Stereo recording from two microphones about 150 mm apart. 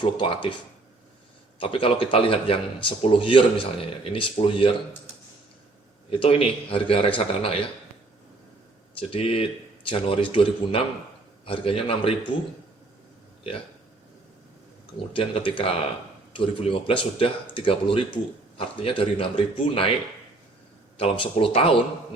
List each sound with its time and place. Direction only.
0.0 s speech: 35° left (ahead or behind)
1.5 s speech: 35° left (ahead or behind)
6.1 s speech: 40° left (ahead or behind)
9.0 s speech: 35° left (ahead or behind)
15.1 s speech: 40° left (ahead or behind)
21.0 s speech: 40° left (ahead or behind)